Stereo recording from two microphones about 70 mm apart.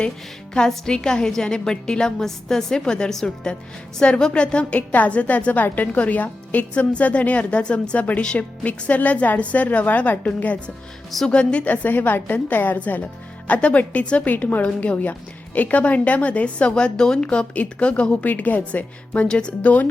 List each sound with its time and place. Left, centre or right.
0.5 s a woman's voice: centre